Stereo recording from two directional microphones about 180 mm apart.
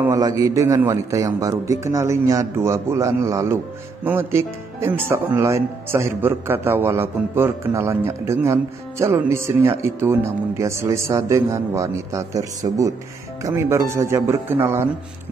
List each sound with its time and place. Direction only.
0.0 s speech: 20° right (ahead or behind)